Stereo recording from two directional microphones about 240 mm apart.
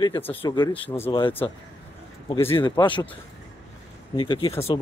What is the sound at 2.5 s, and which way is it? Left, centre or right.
Speech, centre.